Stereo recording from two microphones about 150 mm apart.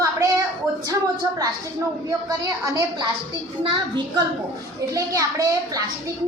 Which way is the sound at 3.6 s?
35° right (ahead or behind).